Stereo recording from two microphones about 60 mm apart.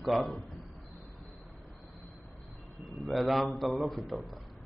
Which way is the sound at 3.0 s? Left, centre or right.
Centre.